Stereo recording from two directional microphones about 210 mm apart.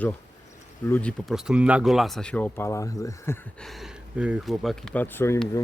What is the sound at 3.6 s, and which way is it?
Speech, centre (ahead or behind).